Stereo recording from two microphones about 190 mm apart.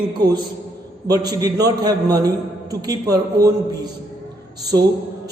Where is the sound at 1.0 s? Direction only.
20° right (ahead or behind).